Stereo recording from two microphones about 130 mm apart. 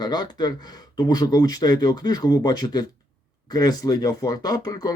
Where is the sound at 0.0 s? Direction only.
35° left (ahead or behind).